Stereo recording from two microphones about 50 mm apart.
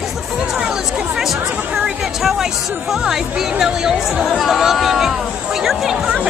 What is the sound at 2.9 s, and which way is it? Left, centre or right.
Speech, centre.